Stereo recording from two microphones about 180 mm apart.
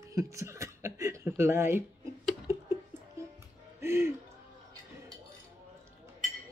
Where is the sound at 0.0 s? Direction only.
15° right (ahead or behind).